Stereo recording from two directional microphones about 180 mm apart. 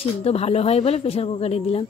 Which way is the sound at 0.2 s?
35° left (ahead or behind).